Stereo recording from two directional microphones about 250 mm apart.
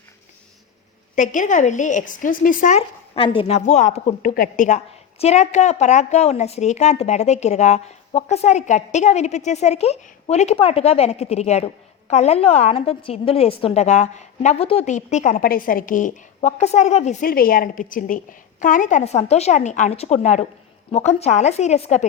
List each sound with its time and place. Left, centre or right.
1.1 s speech: left